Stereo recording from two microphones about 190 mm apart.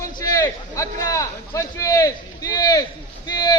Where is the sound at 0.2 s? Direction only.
20° left (ahead or behind).